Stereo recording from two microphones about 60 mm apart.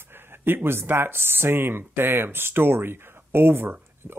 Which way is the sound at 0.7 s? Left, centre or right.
Right.